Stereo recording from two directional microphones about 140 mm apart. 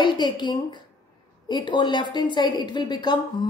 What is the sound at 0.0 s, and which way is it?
A woman's voice, 35° left (ahead or behind).